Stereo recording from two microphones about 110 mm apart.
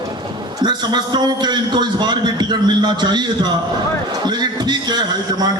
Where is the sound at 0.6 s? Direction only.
40° right (ahead or behind).